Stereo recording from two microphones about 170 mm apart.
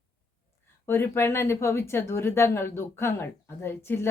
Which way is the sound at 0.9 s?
15° left (ahead or behind).